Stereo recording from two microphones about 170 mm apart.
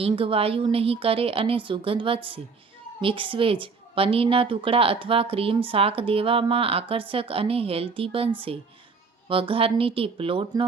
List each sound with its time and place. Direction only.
0.0 s a woman's voice: 35° right (ahead or behind)